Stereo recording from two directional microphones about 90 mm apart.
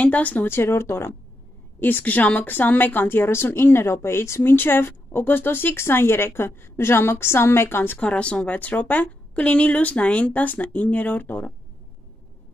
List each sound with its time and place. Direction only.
0.0 s a woman's voice: 15° left (ahead or behind)
8.0 s speech: 10° left (ahead or behind)